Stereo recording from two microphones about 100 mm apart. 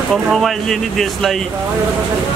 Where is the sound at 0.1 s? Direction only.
Centre (ahead or behind).